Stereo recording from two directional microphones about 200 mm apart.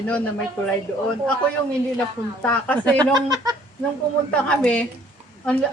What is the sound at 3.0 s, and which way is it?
Speech, 20° right (ahead or behind).